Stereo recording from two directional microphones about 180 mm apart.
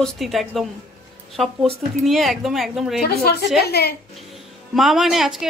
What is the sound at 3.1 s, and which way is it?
Speech, 60° left (ahead or behind).